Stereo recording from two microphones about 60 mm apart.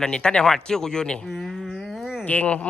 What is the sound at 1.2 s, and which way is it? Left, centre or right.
Speech, centre.